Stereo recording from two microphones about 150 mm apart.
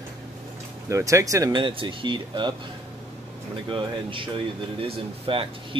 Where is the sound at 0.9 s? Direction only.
20° right (ahead or behind).